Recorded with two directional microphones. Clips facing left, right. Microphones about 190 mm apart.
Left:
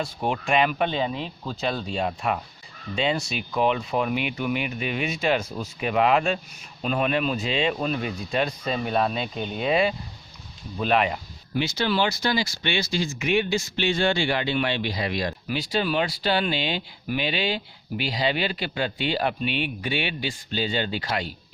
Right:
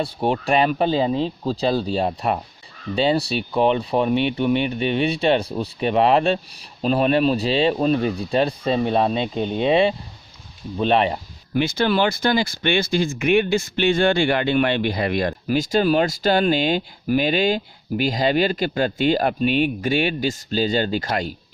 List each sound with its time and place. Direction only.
0.0 s speech: 35° right (ahead or behind)
11.5 s speech: 55° right (ahead or behind)